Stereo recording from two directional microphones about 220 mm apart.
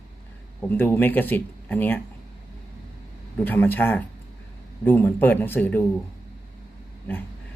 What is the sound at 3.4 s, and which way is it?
Speech, 10° left (ahead or behind).